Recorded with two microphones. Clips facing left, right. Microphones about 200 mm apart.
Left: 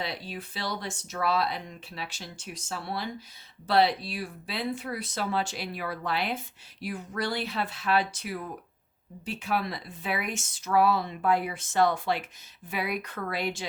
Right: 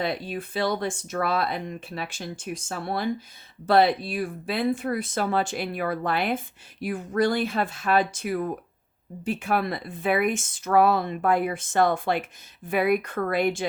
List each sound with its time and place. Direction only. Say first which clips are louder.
0.0 s speech: right 7 dB; 50° right (ahead or behind)